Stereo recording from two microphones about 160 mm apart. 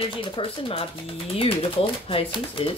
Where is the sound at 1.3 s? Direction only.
35° left (ahead or behind).